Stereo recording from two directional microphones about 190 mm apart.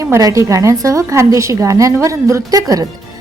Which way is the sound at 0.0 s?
15° right (ahead or behind).